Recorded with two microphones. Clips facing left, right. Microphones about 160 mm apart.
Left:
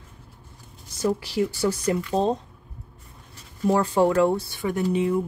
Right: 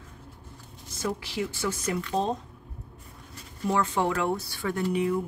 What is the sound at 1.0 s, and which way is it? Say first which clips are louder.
Speech: left 7 dB; 35° left (ahead or behind).